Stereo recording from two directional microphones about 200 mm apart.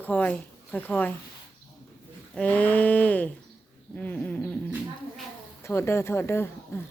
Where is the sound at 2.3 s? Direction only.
10° left (ahead or behind).